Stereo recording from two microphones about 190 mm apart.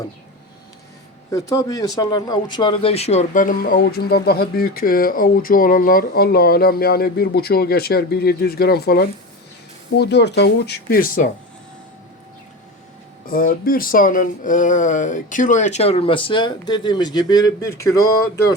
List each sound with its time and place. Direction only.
1.3 s speech: 20° left (ahead or behind); by 11.3 s 45° left (ahead or behind)
13.2 s speech: 50° left (ahead or behind); by 18.5 s 15° left (ahead or behind)